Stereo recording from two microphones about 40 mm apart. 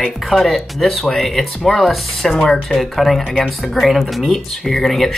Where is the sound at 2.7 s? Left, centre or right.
Centre.